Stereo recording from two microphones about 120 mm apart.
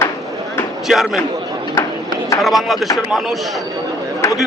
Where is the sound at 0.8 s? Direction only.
Centre (ahead or behind).